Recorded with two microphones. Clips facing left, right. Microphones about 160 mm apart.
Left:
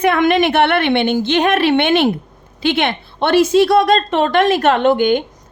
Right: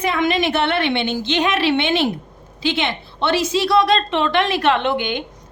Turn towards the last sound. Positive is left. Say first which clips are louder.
# left 7 dB
turn(degrees=45)  # may be behind; listen again after turning